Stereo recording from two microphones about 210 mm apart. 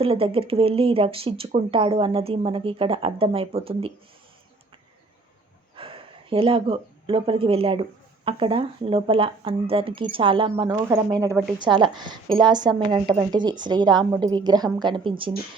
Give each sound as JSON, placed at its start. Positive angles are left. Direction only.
{"t": 0.0, "sound": "speech", "side_deg": -25}
{"t": 5.7, "sound": "speech", "side_deg": -25}